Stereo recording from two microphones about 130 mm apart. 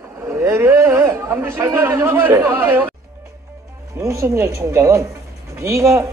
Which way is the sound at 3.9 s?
25° right (ahead or behind).